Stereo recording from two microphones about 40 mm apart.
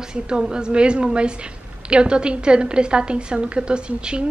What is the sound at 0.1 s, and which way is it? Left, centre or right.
A woman's voice, centre.